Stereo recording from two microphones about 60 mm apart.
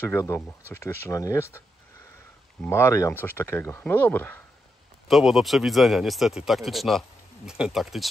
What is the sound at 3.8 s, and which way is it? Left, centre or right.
Speech, left.